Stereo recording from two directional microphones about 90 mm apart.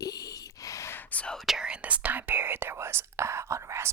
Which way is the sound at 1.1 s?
15° left (ahead or behind).